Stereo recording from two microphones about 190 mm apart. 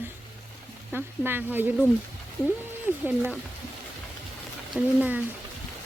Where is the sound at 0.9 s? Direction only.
10° right (ahead or behind).